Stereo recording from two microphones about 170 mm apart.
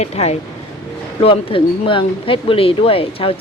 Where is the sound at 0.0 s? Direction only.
40° left (ahead or behind).